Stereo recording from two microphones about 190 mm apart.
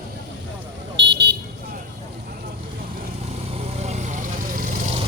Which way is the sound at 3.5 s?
35° right (ahead or behind).